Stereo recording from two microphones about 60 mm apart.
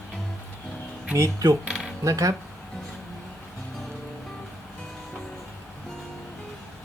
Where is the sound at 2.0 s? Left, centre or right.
Right.